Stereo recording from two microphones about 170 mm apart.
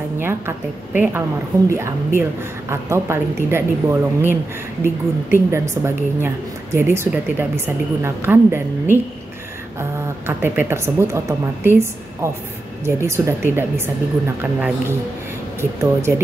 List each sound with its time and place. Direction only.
0.2 s a woman's voice: 15° right (ahead or behind)
15.8 s a woman's voice: 15° right (ahead or behind)